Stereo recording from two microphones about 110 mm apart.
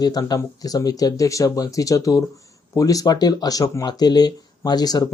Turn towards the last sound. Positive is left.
turn(degrees=35)  # may be behind; listen again after turning